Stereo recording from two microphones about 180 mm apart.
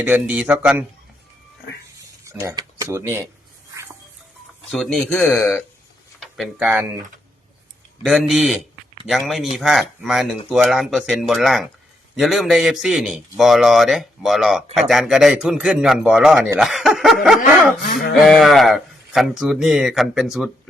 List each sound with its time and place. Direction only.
0.0 s speech: 10° right (ahead or behind)
2.2 s speech: 15° right (ahead or behind)
4.7 s a man's voice: centre (ahead or behind)
6.1 s a sound: centre (ahead or behind)
8.0 s a man's voice: centre (ahead or behind)